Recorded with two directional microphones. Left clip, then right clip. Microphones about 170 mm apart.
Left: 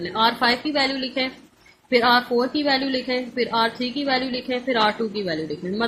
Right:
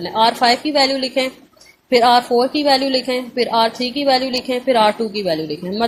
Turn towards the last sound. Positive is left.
turn(degrees=-30)  # may be behind; listen again after turning